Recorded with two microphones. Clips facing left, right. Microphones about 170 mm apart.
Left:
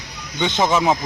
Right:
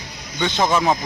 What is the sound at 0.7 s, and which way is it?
Speech, centre (ahead or behind).